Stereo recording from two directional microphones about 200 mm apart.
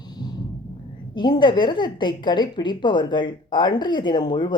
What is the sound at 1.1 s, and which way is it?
A woman's voice, 20° left (ahead or behind).